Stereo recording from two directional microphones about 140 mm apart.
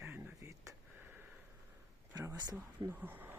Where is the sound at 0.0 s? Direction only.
15° right (ahead or behind).